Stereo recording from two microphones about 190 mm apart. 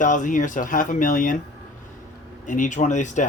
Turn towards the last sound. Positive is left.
turn(degrees=40)  # may be behind; listen again after turning